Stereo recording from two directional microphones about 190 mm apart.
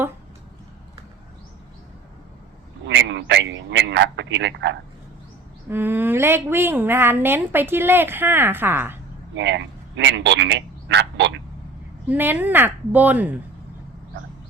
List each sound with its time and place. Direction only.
2.8 s a man's voice: 70° right (ahead or behind)
5.6 s a woman's voice: 10° right (ahead or behind)
9.3 s a man's voice: 70° right (ahead or behind)
12.0 s a woman's voice: 10° right (ahead or behind)